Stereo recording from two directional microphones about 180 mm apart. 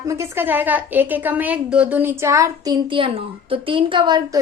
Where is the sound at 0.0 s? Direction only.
15° right (ahead or behind).